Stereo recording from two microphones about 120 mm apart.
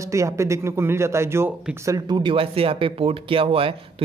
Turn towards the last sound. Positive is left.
turn(degrees=-50)  # may be behind; listen again after turning